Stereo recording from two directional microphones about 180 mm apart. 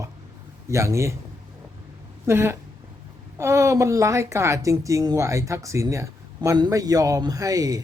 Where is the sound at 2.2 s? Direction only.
15° right (ahead or behind).